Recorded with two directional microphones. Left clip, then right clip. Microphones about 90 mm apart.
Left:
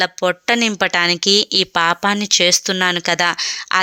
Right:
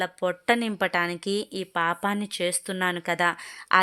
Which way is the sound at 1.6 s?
40° left (ahead or behind).